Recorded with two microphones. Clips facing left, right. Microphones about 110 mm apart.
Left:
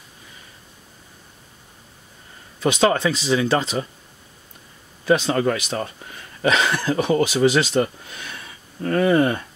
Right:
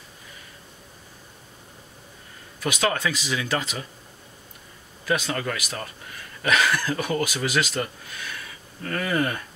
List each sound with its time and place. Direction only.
2.6 s speech: 25° left (ahead or behind)
5.0 s speech: 25° left (ahead or behind)